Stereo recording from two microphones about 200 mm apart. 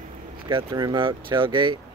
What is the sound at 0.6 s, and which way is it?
Speech, 20° right (ahead or behind).